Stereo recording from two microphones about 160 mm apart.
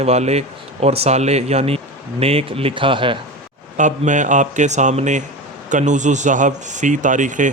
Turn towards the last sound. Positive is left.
turn(degrees=-50)  # may be behind; listen again after turning